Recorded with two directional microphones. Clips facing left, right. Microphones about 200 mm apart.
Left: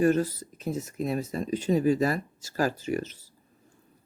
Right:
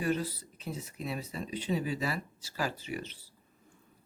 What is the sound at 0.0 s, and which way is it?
Speech, 45° left (ahead or behind).